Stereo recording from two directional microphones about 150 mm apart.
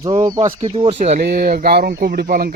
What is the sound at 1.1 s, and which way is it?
Speech, 90° right.